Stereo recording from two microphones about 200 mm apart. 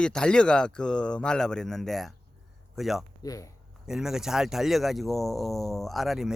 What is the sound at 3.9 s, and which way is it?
Speech, 5° right (ahead or behind).